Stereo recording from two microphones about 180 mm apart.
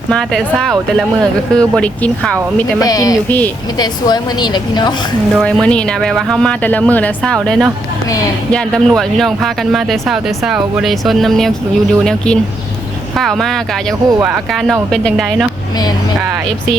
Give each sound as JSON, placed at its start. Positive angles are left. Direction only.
{"t": 0.1, "sound": "speech", "side_deg": 5}
{"t": 2.7, "sound": "a woman's voice", "side_deg": 20}
{"t": 3.2, "sound": "speech", "side_deg": 10}
{"t": 3.8, "sound": "a woman's voice", "side_deg": 20}
{"t": 5.3, "sound": "speech", "side_deg": 0}